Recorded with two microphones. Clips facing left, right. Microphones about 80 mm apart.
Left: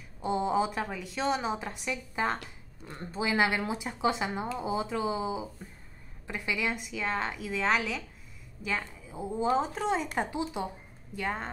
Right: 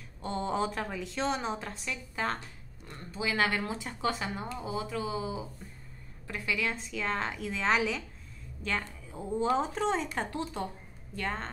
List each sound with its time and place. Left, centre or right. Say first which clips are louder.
0.2 s a woman's voice: left 4 dB; centre
2.9 s a woman's voice: left 3 dB; left; by 11.5 s centre